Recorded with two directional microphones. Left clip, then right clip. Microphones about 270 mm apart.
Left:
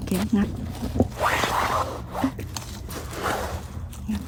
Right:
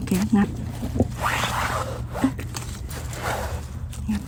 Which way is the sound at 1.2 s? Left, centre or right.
Left.